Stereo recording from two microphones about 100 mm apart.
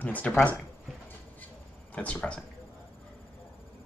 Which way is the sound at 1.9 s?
15° left (ahead or behind).